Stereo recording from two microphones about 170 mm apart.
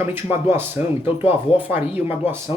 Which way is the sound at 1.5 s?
35° left (ahead or behind).